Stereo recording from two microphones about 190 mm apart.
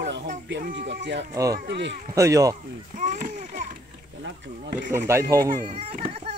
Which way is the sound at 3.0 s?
40° right (ahead or behind).